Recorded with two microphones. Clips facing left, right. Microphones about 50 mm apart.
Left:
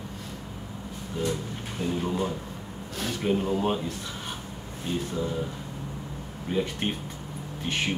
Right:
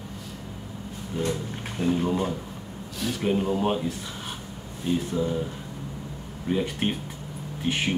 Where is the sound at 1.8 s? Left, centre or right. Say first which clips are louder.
Right 5 dB; right.